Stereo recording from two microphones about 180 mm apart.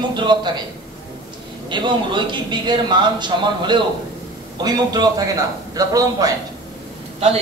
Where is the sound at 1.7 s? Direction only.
25° right (ahead or behind).